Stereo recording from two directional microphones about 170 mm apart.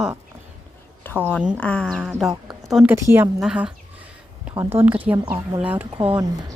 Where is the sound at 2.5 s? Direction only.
Centre (ahead or behind).